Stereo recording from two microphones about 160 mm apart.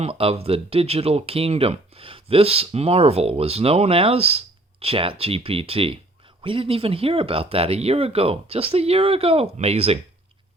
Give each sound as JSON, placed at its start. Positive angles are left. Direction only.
{"t": 0.0, "sound": "speech", "side_deg": -35}